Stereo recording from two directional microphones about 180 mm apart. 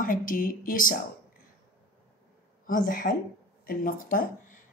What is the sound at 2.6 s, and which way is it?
A woman's voice, 50° left (ahead or behind).